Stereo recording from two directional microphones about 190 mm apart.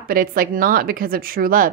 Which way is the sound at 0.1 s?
50° right (ahead or behind).